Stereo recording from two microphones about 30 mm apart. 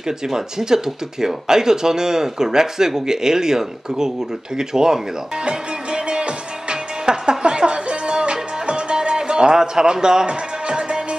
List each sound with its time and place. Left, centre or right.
0.0 s speech: centre
5.5 s music: right